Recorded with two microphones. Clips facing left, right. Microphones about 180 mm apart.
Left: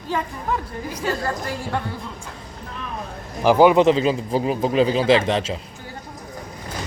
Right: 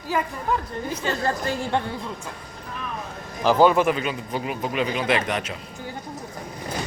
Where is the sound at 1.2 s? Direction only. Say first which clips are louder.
Right 1 dB; 25° right (ahead or behind).